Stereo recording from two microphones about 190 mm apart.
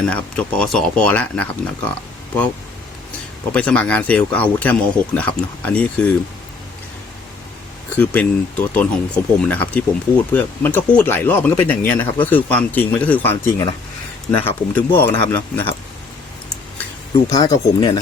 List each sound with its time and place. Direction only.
0.0 s speech: 5° left (ahead or behind)
3.5 s speech: 5° left (ahead or behind)
7.9 s speech: 5° left (ahead or behind)
17.2 s speech: 20° left (ahead or behind)